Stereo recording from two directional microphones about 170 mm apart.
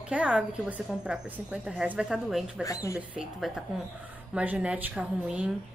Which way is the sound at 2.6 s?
20° left (ahead or behind).